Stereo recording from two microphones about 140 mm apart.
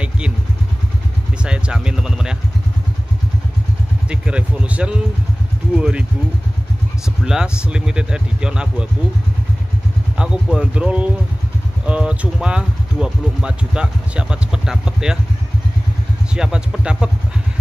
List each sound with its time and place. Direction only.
1.4 s a sound: 5° right (ahead or behind)
4.1 s a sound: 10° right (ahead or behind)
5.8 s speech: 5° right (ahead or behind)
7.2 s speech: 5° right (ahead or behind)
10.1 s speech: 5° right (ahead or behind)
16.3 s speech: 5° right (ahead or behind)